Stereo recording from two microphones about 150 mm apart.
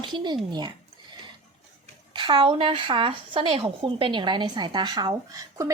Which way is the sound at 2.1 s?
30° right (ahead or behind).